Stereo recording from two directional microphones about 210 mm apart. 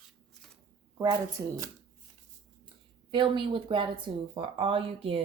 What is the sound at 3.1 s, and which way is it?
Speech, 25° right (ahead or behind).